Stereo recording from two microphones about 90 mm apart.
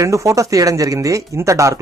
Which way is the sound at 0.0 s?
35° right (ahead or behind).